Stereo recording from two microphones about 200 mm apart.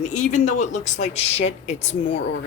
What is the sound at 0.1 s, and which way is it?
Speech, 35° left (ahead or behind).